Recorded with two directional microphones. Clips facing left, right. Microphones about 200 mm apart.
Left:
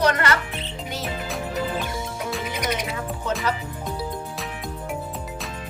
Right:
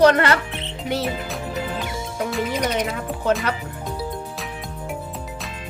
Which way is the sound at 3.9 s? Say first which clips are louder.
Right 1 dB; centre (ahead or behind).